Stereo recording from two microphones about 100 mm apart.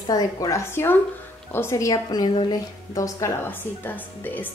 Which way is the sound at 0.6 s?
25° left (ahead or behind).